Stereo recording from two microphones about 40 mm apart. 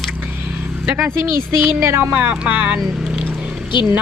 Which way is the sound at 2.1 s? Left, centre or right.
Right.